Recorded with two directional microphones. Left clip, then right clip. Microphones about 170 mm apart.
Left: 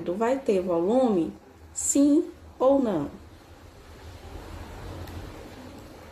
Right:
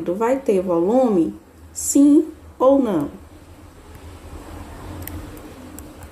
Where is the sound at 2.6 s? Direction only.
10° right (ahead or behind).